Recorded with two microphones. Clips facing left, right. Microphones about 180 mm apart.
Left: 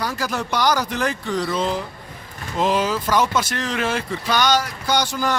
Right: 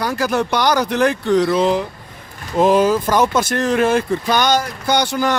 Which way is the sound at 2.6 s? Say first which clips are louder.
Right 7 dB; 50° right (ahead or behind).